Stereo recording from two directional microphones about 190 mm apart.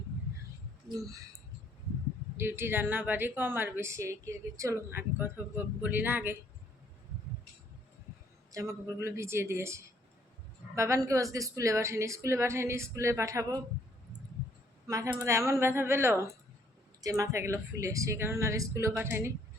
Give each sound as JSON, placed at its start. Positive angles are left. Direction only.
{"t": 0.9, "sound": "a woman's voice", "side_deg": -15}
{"t": 2.4, "sound": "a woman's voice", "side_deg": -10}
{"t": 8.5, "sound": "a woman's voice", "side_deg": -15}
{"t": 14.8, "sound": "a woman's voice", "side_deg": -20}